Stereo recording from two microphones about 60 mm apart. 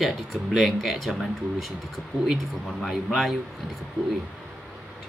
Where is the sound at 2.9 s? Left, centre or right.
Centre.